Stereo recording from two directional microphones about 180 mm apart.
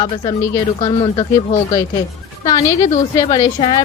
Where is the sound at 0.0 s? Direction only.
20° left (ahead or behind).